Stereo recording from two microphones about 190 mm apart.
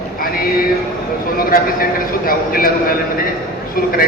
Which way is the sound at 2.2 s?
50° left (ahead or behind).